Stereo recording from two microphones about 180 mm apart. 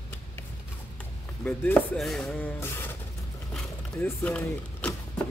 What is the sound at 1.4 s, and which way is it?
Speech, 10° left (ahead or behind).